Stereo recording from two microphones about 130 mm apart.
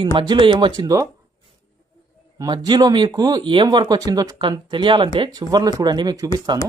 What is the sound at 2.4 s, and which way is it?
Speech, 35° right (ahead or behind).